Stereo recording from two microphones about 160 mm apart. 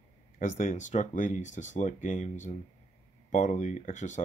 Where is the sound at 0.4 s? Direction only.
50° left (ahead or behind).